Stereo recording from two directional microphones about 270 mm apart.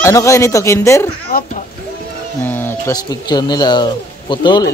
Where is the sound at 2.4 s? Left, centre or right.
Centre.